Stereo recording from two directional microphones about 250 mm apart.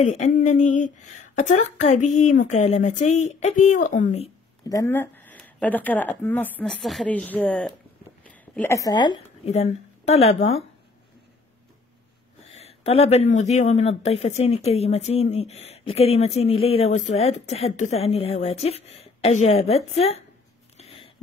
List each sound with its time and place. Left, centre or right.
0.0 s speech: left
4.6 s speech: centre
12.5 s speech: left
20.7 s a sound: left